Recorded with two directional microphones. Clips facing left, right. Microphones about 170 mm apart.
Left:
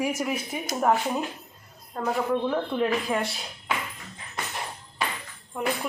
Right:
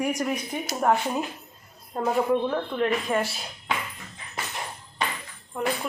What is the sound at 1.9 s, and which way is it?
Speech, 20° right (ahead or behind).